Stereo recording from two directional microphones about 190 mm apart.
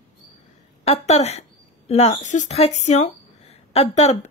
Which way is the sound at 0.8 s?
35° left (ahead or behind).